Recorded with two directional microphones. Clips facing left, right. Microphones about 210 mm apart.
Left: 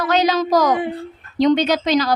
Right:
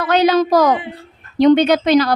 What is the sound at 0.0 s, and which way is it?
A woman's voice, 60° right (ahead or behind).